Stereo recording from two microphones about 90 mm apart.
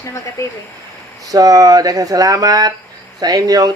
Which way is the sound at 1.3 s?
40° right (ahead or behind).